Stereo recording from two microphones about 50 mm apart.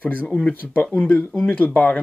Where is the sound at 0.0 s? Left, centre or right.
Left.